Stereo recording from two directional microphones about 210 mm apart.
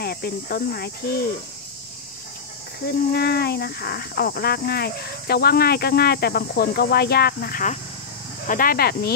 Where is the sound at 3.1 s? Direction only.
50° left (ahead or behind).